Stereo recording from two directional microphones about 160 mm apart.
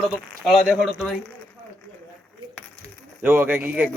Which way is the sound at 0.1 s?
Centre (ahead or behind).